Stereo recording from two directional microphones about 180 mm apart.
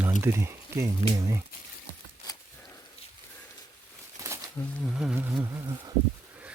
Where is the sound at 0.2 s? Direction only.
15° right (ahead or behind).